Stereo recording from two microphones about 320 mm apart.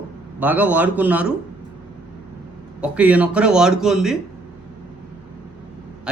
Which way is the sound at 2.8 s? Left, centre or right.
Centre.